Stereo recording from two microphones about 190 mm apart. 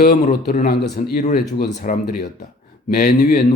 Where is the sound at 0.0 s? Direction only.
50° left (ahead or behind).